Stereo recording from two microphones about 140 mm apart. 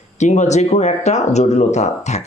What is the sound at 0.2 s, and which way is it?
Speech, 55° left (ahead or behind).